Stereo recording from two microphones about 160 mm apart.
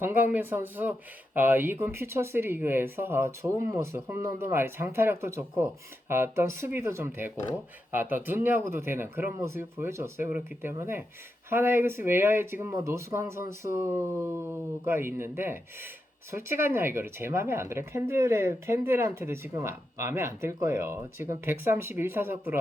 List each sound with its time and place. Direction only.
0.0 s speech: 15° right (ahead or behind)